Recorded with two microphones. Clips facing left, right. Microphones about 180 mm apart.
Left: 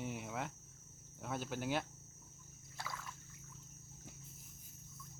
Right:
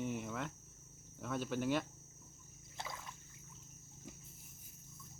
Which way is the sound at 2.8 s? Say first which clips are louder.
Even; 20° right (ahead or behind).